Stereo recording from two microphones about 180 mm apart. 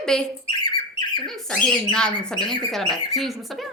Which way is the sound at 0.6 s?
25° left (ahead or behind).